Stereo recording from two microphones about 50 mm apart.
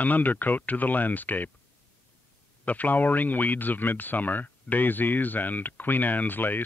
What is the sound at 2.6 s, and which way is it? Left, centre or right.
Speech, left.